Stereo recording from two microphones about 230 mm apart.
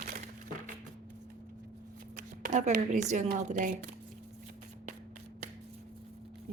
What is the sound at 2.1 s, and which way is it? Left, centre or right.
Speech, right.